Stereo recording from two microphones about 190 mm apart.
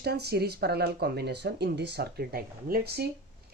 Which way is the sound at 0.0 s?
60° right (ahead or behind).